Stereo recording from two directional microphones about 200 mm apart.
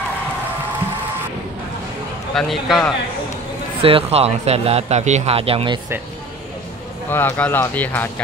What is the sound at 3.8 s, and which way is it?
Speech, 30° right (ahead or behind).